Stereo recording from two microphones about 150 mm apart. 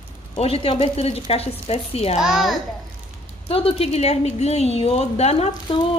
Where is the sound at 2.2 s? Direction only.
Centre (ahead or behind).